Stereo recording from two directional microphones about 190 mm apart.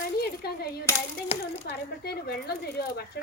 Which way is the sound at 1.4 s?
55° left (ahead or behind).